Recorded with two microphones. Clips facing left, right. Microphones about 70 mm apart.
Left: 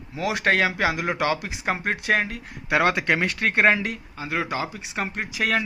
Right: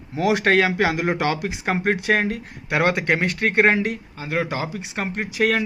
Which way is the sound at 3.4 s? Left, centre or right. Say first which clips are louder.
Right 3 dB; right.